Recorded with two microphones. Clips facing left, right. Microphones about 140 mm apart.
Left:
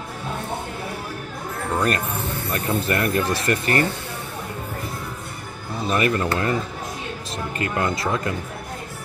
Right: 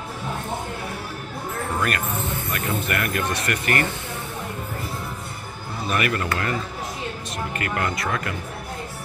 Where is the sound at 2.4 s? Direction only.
25° left (ahead or behind).